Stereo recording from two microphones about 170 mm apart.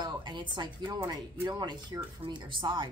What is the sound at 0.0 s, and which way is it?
A woman's voice, 25° right (ahead or behind).